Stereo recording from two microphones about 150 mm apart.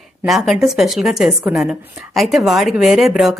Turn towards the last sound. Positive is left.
turn(degrees=0)  # may be behind; listen again after turning